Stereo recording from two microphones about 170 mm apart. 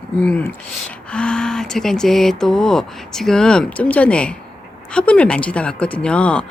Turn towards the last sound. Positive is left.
turn(degrees=5)  # may be behind; listen again after turning